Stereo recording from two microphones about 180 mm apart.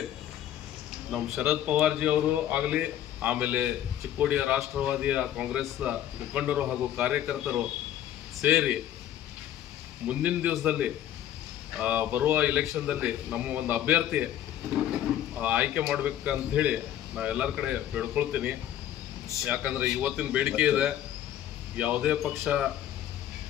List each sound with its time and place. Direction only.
1.1 s speech: 5° right (ahead or behind)
10.0 s speech: 5° right (ahead or behind)